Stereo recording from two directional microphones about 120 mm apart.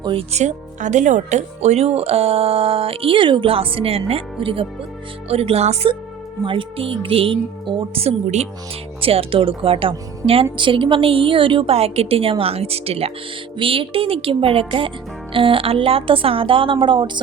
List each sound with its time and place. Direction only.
0.0 s speech: 50° right (ahead or behind)
6.4 s speech: 45° right (ahead or behind)
8.0 s speech: 65° right (ahead or behind)
9.0 s speech: 50° right (ahead or behind)